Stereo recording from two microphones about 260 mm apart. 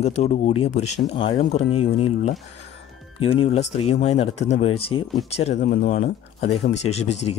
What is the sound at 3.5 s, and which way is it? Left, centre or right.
Speech, left.